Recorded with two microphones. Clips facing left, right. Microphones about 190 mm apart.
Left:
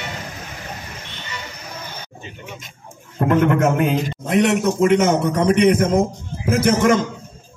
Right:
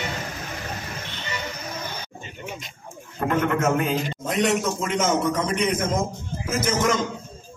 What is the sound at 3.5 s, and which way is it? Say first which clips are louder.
A man's voice: left 5 dB; 60° left (ahead or behind).